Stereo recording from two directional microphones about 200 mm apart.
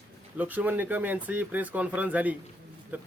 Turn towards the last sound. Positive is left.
turn(degrees=-10)  # may be behind; listen again after turning